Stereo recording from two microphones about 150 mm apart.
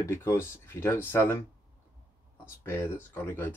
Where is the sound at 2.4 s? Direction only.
15° left (ahead or behind).